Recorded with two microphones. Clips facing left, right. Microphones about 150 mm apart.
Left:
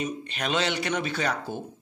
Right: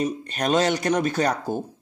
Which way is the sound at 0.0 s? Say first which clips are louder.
Right 6 dB; 40° right (ahead or behind).